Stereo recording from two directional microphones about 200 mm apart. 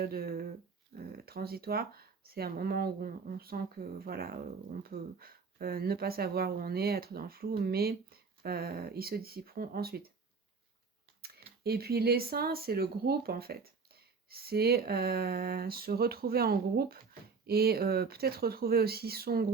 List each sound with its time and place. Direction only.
0.0 s speech: 50° right (ahead or behind)
11.2 s a sound: 50° right (ahead or behind)
11.6 s speech: 50° right (ahead or behind)